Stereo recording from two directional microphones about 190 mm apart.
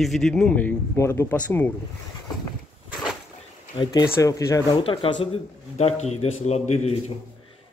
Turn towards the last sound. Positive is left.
turn(degrees=35)  # may be behind; listen again after turning